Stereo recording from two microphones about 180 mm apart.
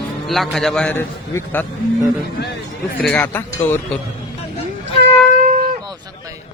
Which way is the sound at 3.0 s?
5° left (ahead or behind).